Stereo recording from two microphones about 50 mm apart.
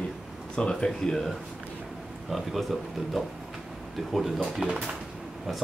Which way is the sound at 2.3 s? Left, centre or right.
Centre.